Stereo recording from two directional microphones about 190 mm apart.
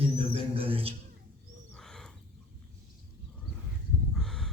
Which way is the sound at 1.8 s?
Centre (ahead or behind).